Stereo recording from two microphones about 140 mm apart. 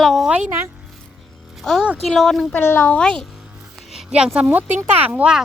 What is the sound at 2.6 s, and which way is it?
Speech, 15° left (ahead or behind).